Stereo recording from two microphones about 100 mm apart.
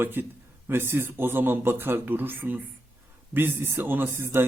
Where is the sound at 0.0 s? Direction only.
20° right (ahead or behind).